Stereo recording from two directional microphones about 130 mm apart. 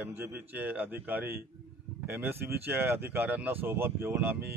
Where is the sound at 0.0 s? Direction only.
15° right (ahead or behind).